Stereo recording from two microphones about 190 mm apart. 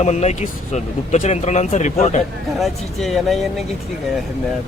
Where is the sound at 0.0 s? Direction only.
35° left (ahead or behind).